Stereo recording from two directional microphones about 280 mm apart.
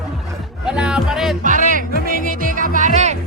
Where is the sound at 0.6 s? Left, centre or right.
Centre.